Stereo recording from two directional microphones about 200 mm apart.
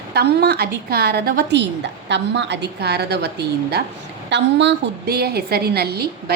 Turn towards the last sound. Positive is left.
turn(degrees=-50)  # may be behind; listen again after turning